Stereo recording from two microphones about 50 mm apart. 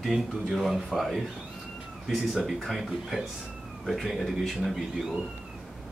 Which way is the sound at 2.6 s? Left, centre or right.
Centre.